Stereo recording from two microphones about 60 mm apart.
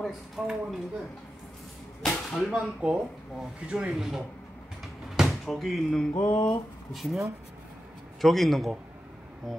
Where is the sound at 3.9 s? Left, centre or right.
Centre.